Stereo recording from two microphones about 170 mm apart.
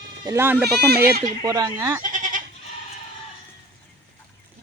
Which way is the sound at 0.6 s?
70° right (ahead or behind).